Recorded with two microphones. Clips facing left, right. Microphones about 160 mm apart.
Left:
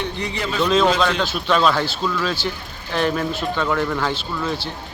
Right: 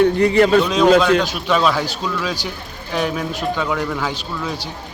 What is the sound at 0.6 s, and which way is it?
Speech, 5° right (ahead or behind).